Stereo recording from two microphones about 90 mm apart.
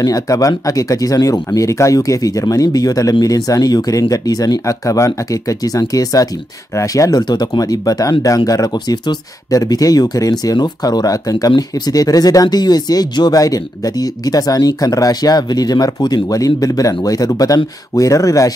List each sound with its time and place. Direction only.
0.0 s speech: 40° left (ahead or behind)